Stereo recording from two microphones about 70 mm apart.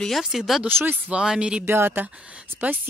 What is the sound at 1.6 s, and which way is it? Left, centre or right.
A woman's voice, right.